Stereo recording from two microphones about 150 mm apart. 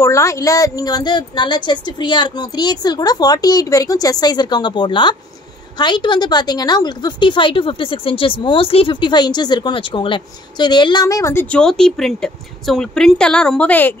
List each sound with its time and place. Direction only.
0.0 s a woman's voice: 20° left (ahead or behind)